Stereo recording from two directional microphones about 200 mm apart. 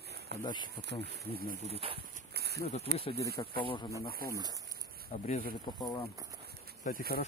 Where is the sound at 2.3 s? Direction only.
55° right (ahead or behind).